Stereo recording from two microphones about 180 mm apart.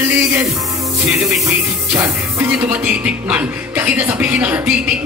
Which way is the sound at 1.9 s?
15° right (ahead or behind).